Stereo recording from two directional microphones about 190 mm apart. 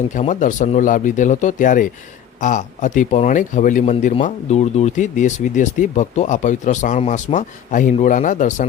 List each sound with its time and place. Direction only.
0.1 s speech: 40° left (ahead or behind)